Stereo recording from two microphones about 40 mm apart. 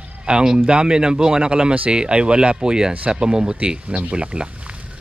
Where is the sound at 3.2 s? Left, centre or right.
Right.